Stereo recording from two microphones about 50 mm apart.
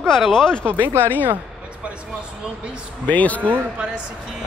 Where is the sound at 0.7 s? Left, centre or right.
Right.